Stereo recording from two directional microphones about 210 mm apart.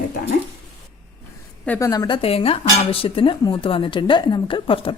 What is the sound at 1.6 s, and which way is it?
A woman's voice, 10° left (ahead or behind).